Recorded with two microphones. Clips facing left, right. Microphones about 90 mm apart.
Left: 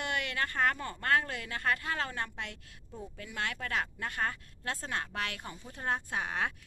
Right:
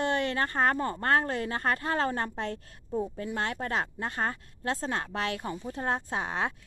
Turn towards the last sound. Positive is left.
turn(degrees=-25)  # may be behind; listen again after turning